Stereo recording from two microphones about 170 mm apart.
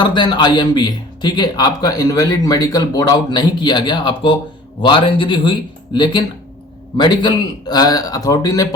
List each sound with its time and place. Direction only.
0.0 s a man's voice: 25° left (ahead or behind)